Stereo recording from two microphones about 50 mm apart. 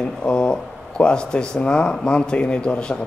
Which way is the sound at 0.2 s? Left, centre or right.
Centre.